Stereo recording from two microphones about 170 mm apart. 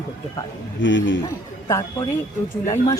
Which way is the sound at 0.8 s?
90° left.